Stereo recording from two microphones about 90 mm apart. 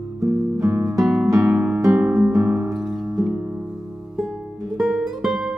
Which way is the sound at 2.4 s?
10° right (ahead or behind).